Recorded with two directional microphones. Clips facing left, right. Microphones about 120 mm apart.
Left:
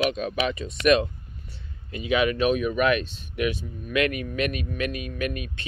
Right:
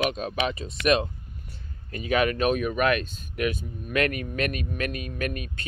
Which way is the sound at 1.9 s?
45° right (ahead or behind).